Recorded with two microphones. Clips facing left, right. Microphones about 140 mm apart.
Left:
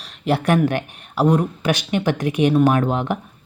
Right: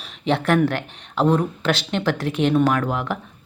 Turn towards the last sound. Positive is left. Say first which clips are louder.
# left 3 dB
turn(degrees=20)  # may be behind; listen again after turning